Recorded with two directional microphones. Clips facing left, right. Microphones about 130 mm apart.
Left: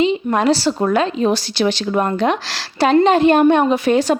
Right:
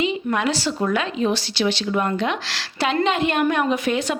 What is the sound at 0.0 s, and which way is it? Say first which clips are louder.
A woman's voice: left 6 dB; 30° left (ahead or behind).